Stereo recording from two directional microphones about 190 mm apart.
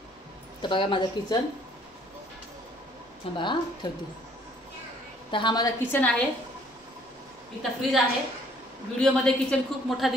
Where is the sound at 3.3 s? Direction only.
25° left (ahead or behind).